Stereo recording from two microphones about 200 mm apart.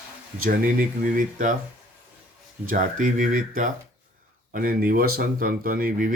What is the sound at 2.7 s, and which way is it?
Speech, 40° right (ahead or behind).